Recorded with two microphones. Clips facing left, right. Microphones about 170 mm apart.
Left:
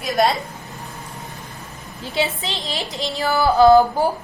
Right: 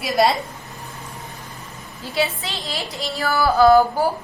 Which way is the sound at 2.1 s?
20° left (ahead or behind).